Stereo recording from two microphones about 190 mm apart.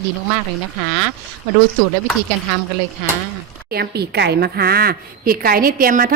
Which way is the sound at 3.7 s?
55° right (ahead or behind).